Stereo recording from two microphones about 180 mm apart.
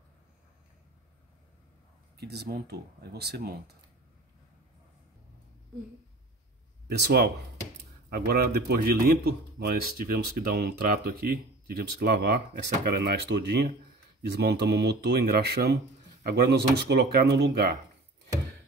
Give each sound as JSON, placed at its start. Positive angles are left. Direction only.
{"t": 2.1, "sound": "a man's voice", "side_deg": -65}
{"t": 6.9, "sound": "a man's voice", "side_deg": -60}